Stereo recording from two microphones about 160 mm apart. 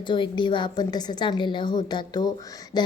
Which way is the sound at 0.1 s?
30° left (ahead or behind).